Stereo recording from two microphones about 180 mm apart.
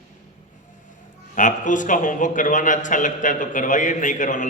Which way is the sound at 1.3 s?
45° left (ahead or behind).